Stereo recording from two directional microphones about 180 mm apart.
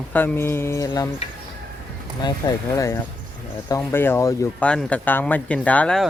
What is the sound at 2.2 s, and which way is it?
Speech, 20° left (ahead or behind).